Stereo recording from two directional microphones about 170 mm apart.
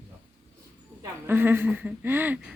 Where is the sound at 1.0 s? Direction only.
15° right (ahead or behind).